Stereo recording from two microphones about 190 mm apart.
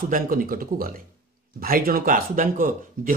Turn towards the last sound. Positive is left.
turn(degrees=-45)  # may be behind; listen again after turning